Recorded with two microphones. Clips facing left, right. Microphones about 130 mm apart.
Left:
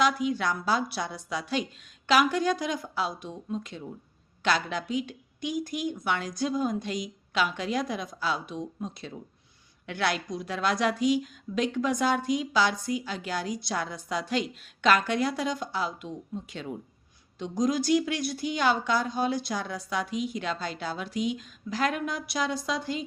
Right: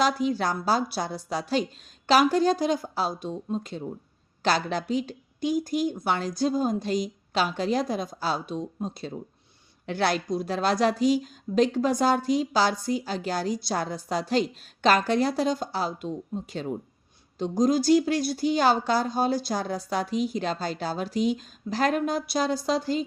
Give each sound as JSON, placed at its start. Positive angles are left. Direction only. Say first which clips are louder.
{"t": 0.0, "sound": "a woman's voice", "louder": "right 2 dB", "side_deg": -35}